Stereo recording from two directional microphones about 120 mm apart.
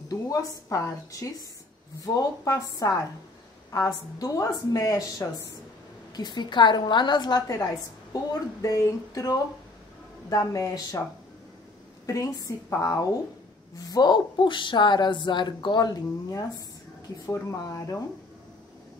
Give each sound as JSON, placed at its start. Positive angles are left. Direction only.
{"t": 0.1, "sound": "a woman's voice", "side_deg": 30}
{"t": 12.1, "sound": "a woman's voice", "side_deg": 25}